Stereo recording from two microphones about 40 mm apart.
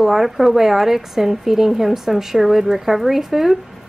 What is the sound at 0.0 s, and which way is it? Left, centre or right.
A woman's voice, centre.